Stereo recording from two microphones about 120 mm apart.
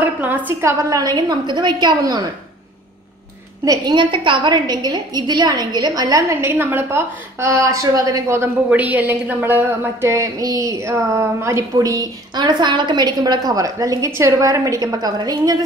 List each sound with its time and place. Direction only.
0.0 s a woman's voice: 15° right (ahead or behind); by 2.2 s 30° right (ahead or behind)
3.6 s a woman's voice: 35° right (ahead or behind)
8.6 s a woman's voice: 10° right (ahead or behind); by 15.5 s 30° right (ahead or behind)